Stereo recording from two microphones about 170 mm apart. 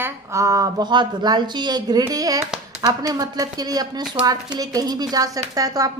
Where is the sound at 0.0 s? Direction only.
15° right (ahead or behind).